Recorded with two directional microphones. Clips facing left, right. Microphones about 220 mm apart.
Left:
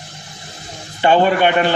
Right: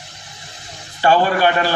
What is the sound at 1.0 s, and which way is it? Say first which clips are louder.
Speech: left 2 dB; 20° left (ahead or behind).